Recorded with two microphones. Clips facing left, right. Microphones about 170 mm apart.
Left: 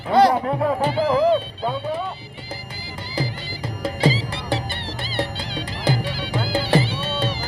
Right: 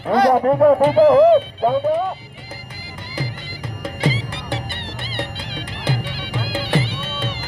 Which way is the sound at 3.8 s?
30° left (ahead or behind).